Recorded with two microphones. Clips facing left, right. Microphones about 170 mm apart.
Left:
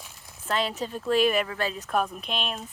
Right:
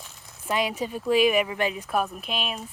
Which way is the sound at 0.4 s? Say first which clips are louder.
Right 2 dB; 10° right (ahead or behind).